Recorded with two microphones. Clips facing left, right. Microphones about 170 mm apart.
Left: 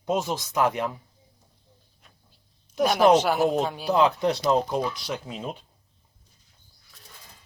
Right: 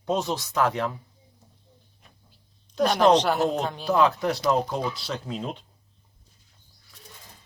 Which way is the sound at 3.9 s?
20° left (ahead or behind).